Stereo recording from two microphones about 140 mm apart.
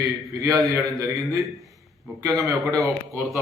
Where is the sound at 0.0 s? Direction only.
25° right (ahead or behind).